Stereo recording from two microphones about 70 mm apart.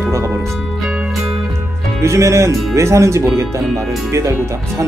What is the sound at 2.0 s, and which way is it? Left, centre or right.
Speech, right.